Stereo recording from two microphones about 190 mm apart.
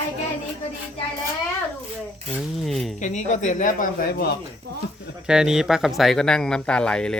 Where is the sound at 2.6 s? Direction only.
Centre (ahead or behind).